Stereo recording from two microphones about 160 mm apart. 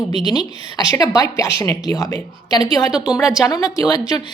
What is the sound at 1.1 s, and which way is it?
A woman's voice, 20° left (ahead or behind).